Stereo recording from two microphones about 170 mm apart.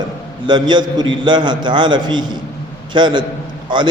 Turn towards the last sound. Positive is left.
turn(degrees=-25)  # may be behind; listen again after turning